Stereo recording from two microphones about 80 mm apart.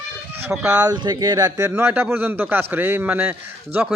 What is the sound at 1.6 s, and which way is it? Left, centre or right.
A man's voice, right.